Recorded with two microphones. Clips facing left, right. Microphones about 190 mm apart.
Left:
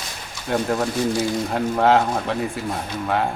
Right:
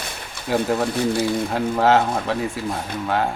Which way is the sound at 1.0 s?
60° right (ahead or behind).